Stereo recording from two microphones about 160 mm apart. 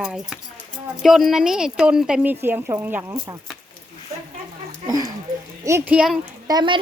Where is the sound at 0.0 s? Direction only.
5° right (ahead or behind).